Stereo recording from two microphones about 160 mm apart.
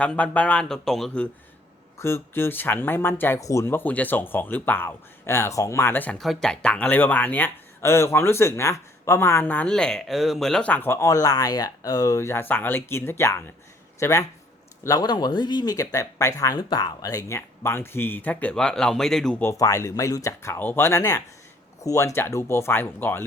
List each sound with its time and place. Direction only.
0.0 s speech: 10° left (ahead or behind)
2.0 s speech: 15° left (ahead or behind)
19.4 s speech: 20° left (ahead or behind)